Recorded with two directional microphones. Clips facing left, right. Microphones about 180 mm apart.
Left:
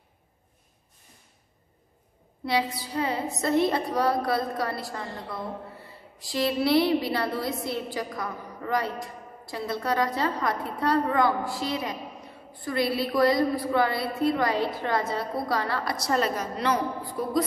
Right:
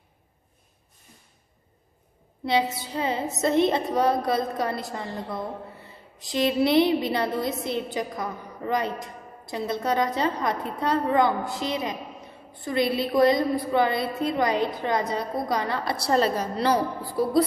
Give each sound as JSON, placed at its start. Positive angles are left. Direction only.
{"t": 2.4, "sound": "a woman's voice", "side_deg": -25}
{"t": 17.1, "sound": "music", "side_deg": -35}